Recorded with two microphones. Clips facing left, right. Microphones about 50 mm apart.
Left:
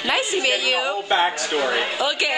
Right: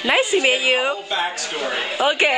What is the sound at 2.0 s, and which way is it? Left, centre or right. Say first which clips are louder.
Speech: right 4 dB; right.